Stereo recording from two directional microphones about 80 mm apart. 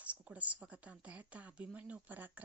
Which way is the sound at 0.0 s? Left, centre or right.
Centre.